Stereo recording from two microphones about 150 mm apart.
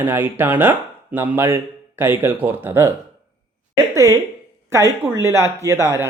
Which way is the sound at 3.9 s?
20° right (ahead or behind).